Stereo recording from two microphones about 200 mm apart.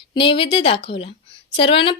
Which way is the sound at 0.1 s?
25° left (ahead or behind).